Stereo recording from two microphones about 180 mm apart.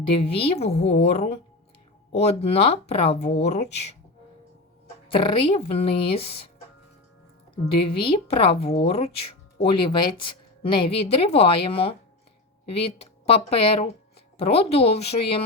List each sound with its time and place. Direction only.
0.1 s speech: 30° left (ahead or behind)
5.0 s speech: 30° left (ahead or behind)
7.6 s speech: 30° left (ahead or behind)